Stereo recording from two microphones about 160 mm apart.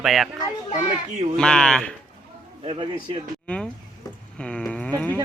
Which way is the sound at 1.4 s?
5° left (ahead or behind).